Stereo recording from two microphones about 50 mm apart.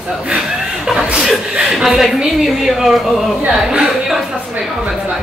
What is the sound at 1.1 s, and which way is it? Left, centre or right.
Speech, centre.